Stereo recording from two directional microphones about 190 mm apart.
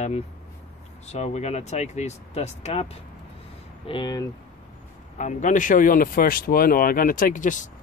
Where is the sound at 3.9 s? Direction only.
20° left (ahead or behind).